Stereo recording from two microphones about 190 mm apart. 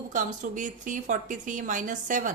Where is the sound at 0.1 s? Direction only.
40° right (ahead or behind).